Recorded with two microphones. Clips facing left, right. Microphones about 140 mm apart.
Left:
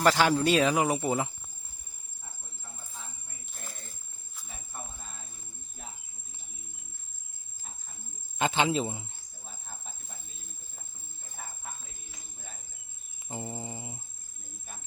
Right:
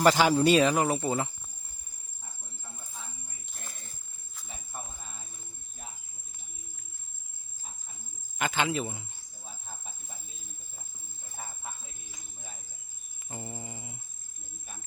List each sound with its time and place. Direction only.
0.0 s speech: centre (ahead or behind)
0.9 s speech: 10° left (ahead or behind)
3.0 s a sound: 5° left (ahead or behind)
8.4 s a man's voice: 25° left (ahead or behind)
13.3 s a man's voice: 25° left (ahead or behind)